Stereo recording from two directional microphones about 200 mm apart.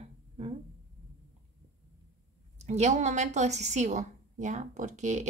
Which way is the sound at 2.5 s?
35° right (ahead or behind).